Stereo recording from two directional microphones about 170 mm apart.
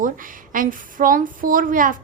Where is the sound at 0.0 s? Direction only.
50° right (ahead or behind).